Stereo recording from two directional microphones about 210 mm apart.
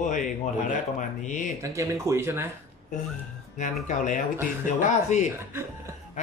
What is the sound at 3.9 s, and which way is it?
Speech, 40° left (ahead or behind).